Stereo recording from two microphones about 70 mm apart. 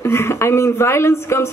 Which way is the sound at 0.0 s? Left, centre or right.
Left.